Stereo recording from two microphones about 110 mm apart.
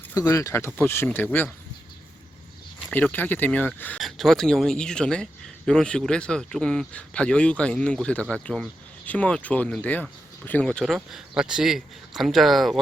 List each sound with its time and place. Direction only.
0.1 s speech: 30° left (ahead or behind)
2.7 s speech: 15° left (ahead or behind)
3.9 s speech: centre (ahead or behind)